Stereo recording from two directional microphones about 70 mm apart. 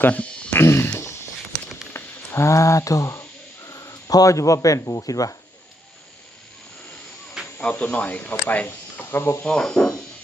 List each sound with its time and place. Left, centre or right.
0.0 s a sound: left
0.6 s speech: left
1.9 s a sound: left
3.7 s speech: left
7.6 s speech: centre; by 9.4 s left
9.4 s speech: centre